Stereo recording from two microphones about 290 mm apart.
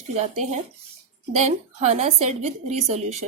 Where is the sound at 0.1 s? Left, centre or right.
Right.